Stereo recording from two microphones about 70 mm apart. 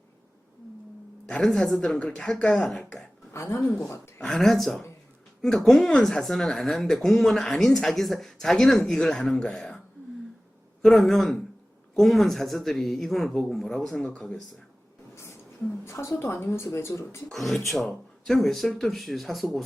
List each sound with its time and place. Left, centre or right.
1.4 s a woman's voice: centre
3.3 s speech: left
4.2 s a woman's voice: centre
10.8 s a woman's voice: centre
15.1 s a sound: left
15.8 s speech: left
17.3 s speech: centre